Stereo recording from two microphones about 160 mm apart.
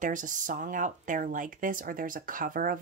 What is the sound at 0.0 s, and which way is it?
Speech, 55° right (ahead or behind).